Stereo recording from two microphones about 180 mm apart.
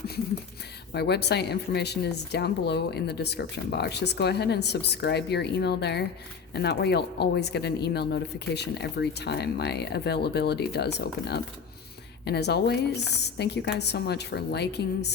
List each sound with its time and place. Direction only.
0.9 s speech: 65° left (ahead or behind)